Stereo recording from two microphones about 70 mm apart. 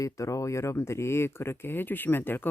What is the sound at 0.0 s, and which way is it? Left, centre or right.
Speech, left.